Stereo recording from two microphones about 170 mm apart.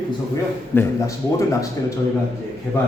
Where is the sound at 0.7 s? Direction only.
15° left (ahead or behind).